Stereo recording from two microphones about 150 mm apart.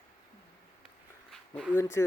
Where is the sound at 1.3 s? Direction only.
5° left (ahead or behind).